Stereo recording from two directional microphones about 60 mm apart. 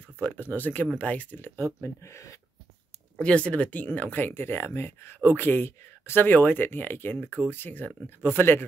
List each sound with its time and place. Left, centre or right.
0.2 s speech: left
2.0 s speech: left
3.2 s speech: centre; by 8.6 s left